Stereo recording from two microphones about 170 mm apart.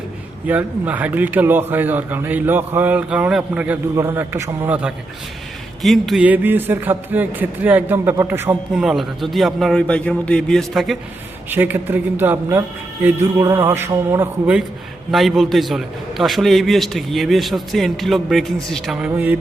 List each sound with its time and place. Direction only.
0.4 s a man's voice: 10° right (ahead or behind)
11.5 s a man's voice: 10° right (ahead or behind)
15.1 s a man's voice: centre (ahead or behind)